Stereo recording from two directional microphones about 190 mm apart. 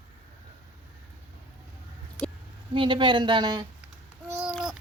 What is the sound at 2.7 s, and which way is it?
Speech, 25° right (ahead or behind).